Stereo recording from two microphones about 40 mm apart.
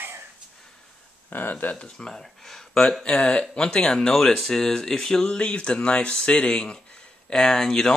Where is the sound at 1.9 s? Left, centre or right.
Centre.